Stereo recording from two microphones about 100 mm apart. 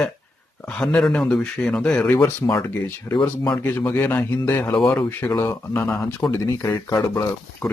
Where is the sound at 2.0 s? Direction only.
20° left (ahead or behind).